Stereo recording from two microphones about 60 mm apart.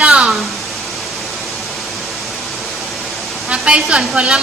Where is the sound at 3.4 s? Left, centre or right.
Centre.